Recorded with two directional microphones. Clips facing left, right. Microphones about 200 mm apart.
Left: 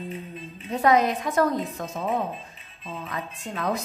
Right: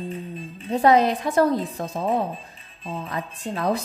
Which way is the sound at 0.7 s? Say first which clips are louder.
Right 3 dB; 30° right (ahead or behind).